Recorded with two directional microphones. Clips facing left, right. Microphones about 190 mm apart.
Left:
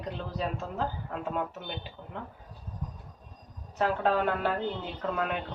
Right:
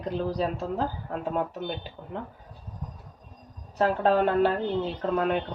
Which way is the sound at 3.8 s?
35° right (ahead or behind).